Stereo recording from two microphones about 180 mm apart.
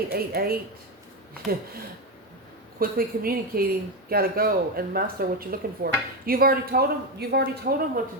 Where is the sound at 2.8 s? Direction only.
55° right (ahead or behind).